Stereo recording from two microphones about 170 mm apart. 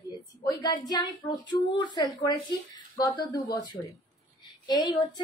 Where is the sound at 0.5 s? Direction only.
25° left (ahead or behind).